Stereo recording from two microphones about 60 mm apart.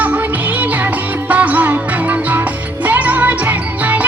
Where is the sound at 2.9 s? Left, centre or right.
Right.